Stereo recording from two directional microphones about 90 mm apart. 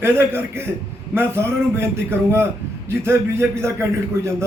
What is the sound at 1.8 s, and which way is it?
A man's voice, 30° right (ahead or behind).